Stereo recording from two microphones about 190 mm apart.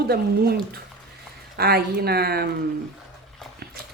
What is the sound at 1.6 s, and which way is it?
Speech, 55° right (ahead or behind).